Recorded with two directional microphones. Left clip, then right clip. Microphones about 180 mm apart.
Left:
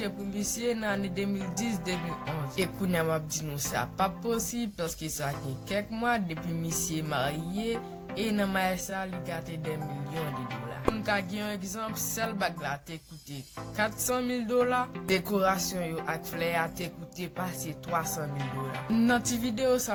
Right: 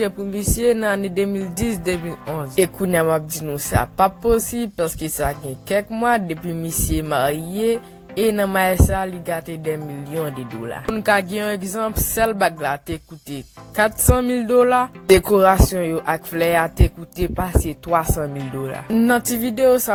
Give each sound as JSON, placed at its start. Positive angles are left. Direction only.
{"t": 0.6, "sound": "speech", "side_deg": -50}
{"t": 10.9, "sound": "speech", "side_deg": -50}